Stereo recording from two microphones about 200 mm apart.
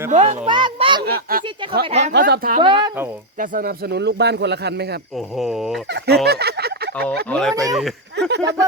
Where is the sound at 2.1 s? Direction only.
50° right (ahead or behind).